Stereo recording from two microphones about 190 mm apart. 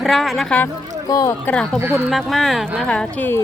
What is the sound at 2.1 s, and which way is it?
Speech, centre (ahead or behind).